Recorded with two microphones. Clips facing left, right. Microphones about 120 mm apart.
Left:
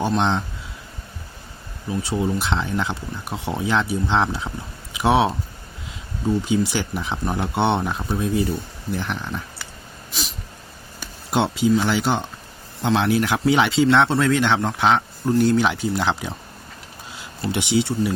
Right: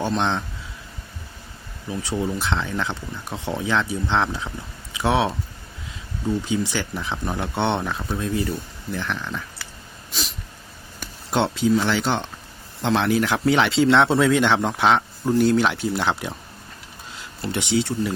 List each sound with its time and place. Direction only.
0.0 s speech: 10° left (ahead or behind)
2.0 s speech: 15° left (ahead or behind)
6.4 s speech: 10° left (ahead or behind)
11.3 s speech: 5° left (ahead or behind)
17.5 s speech: 15° left (ahead or behind)